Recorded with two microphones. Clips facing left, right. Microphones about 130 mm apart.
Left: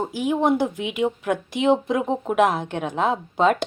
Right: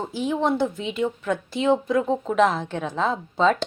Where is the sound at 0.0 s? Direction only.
15° left (ahead or behind).